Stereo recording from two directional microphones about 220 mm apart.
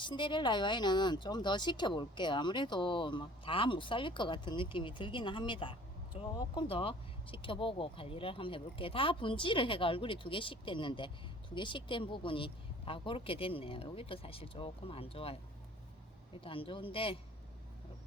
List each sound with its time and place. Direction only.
0.0 s speech: 20° left (ahead or behind)
16.4 s speech: 25° left (ahead or behind)